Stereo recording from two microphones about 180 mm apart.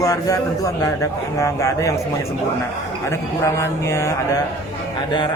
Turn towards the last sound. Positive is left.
turn(degrees=15)  # may be behind; listen again after turning